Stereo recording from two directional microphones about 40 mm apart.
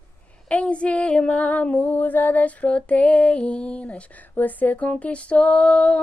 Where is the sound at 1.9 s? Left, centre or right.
Left.